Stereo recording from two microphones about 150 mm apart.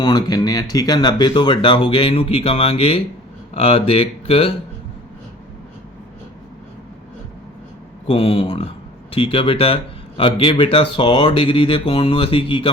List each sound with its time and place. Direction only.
0.0 s speech: 25° left (ahead or behind)
8.0 s speech: 40° left (ahead or behind)